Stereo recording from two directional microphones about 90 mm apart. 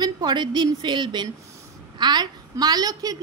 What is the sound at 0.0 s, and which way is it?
A woman's voice, 55° right (ahead or behind).